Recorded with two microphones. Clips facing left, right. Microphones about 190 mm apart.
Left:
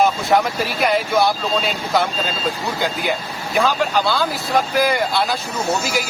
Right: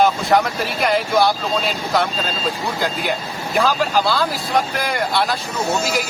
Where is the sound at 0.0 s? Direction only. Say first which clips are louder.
Even; centre (ahead or behind).